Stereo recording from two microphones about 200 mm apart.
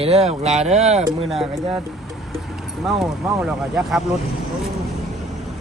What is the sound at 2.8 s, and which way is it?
Speech, centre (ahead or behind).